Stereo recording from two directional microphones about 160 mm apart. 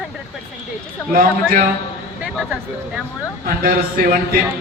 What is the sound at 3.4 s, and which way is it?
Speech, 65° right (ahead or behind).